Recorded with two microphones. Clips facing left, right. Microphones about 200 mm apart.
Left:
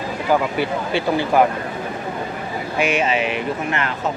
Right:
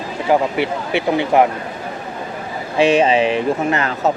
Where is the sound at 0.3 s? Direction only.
25° right (ahead or behind).